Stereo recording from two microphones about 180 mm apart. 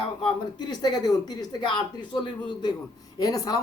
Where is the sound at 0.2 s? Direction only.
25° left (ahead or behind).